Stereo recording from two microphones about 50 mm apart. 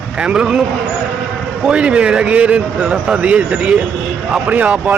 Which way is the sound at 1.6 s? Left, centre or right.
Right.